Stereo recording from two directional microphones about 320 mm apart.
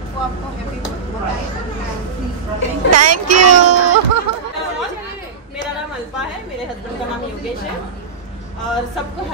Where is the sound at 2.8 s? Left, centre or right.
Right.